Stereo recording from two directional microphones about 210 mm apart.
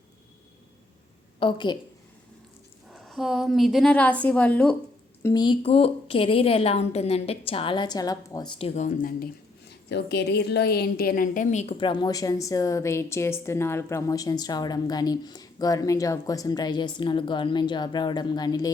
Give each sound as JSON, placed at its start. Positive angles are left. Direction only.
{"t": 1.4, "sound": "a woman's voice", "side_deg": 25}
{"t": 2.9, "sound": "a woman's voice", "side_deg": 0}
{"t": 5.2, "sound": "a woman's voice", "side_deg": 20}